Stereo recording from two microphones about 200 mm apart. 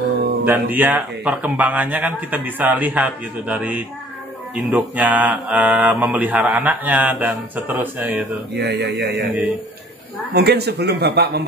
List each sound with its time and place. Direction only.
0.5 s mantra: 10° right (ahead or behind)
8.5 s speech: 55° right (ahead or behind)
10.3 s a man's voice: 55° right (ahead or behind)